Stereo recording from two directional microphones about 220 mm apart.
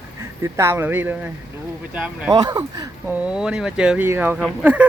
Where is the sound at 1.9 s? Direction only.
5° right (ahead or behind).